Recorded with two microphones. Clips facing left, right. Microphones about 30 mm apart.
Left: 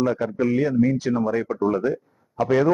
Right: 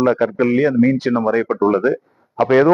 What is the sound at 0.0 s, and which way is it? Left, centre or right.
Speech, right.